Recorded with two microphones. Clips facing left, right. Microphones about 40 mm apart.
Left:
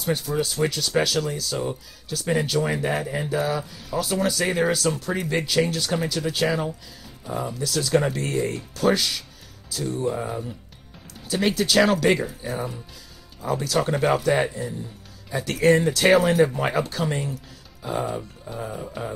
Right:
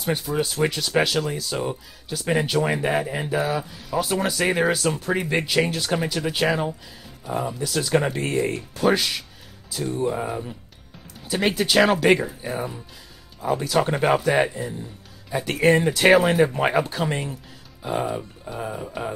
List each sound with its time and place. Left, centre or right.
0.0 s speech: centre